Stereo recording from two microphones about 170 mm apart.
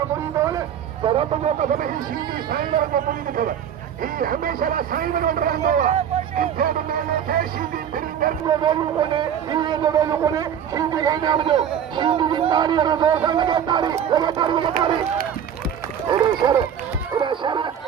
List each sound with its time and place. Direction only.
0.3 s a sound: 20° right (ahead or behind)
1.0 s a man's voice: 35° right (ahead or behind); by 7.4 s 60° right (ahead or behind)
7.9 s music: 55° right (ahead or behind)
8.4 s speech: 25° right (ahead or behind)
16.0 s speech: 25° right (ahead or behind)
17.2 s dog: 30° right (ahead or behind)